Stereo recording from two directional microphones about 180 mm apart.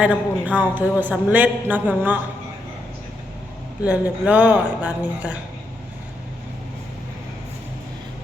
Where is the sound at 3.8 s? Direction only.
5° right (ahead or behind).